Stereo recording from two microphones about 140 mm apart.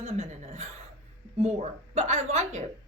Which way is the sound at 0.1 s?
50° right (ahead or behind).